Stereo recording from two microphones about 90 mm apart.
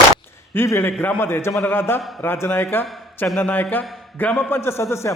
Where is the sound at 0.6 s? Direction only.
25° left (ahead or behind).